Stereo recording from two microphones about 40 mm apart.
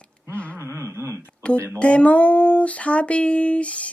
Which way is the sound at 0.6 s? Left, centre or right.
Right.